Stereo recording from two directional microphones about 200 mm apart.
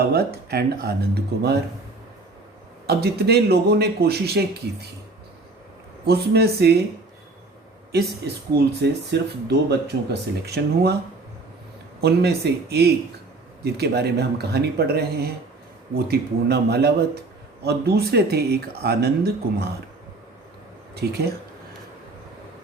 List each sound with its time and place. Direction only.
0.0 s speech: 50° right (ahead or behind)
2.8 s speech: 50° right (ahead or behind)
6.1 s speech: 55° right (ahead or behind)
8.5 s speech: 55° right (ahead or behind)
11.9 s speech: 55° right (ahead or behind)
21.0 s speech: 55° right (ahead or behind)